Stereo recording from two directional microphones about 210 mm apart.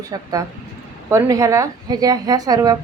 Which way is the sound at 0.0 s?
15° right (ahead or behind).